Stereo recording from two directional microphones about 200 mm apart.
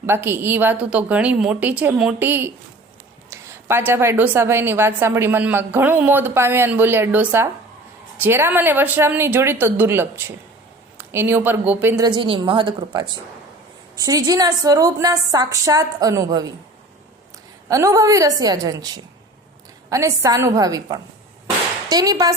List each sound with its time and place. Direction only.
0.0 s a woman's voice: 10° right (ahead or behind)
17.7 s a woman's voice: 15° right (ahead or behind)
21.8 s a woman's voice: 20° right (ahead or behind)